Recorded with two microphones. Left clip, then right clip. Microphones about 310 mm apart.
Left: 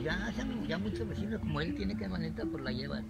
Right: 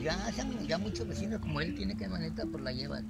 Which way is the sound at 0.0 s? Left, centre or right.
Centre.